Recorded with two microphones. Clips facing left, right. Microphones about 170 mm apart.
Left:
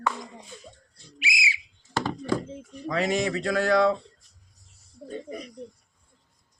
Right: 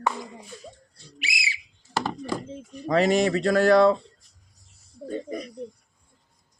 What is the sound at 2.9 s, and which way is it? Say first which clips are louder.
Speech: right 5 dB; 35° right (ahead or behind).